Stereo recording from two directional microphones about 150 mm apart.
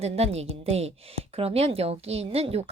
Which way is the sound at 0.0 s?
45° right (ahead or behind).